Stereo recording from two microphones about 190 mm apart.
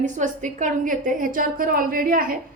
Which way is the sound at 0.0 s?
40° right (ahead or behind).